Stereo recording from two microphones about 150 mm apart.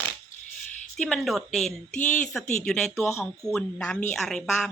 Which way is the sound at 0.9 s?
5° left (ahead or behind).